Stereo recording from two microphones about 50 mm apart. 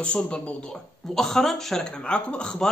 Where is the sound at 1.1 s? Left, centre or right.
Centre.